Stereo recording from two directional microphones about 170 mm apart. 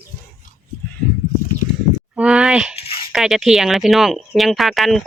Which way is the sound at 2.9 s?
30° left (ahead or behind).